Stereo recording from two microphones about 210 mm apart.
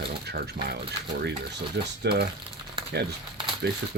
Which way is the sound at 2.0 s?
50° right (ahead or behind).